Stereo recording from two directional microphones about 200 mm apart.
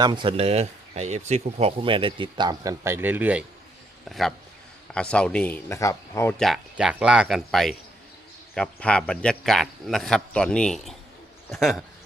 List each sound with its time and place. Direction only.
0.0 s speech: 25° right (ahead or behind); by 6.3 s 15° left (ahead or behind)
6.4 s speech: centre (ahead or behind)